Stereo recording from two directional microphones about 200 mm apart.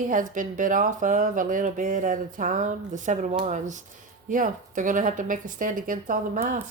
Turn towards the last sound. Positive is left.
turn(degrees=-45)  # may be behind; listen again after turning